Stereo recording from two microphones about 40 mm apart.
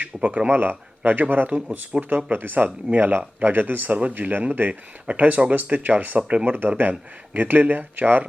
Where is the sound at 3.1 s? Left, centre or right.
Right.